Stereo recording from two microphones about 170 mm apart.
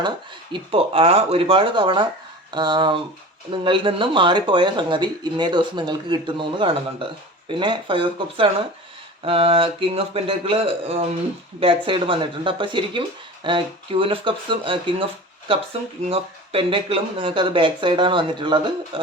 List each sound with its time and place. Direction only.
0.5 s a man's voice: 35° right (ahead or behind)